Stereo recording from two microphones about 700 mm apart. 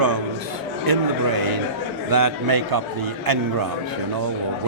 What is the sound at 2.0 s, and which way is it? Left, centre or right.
A man's voice, right.